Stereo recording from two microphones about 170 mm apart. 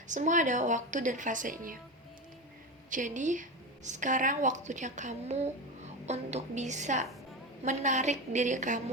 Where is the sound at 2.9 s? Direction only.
50° right (ahead or behind).